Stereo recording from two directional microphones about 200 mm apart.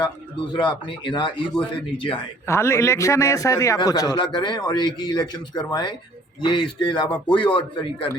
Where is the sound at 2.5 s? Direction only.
15° left (ahead or behind).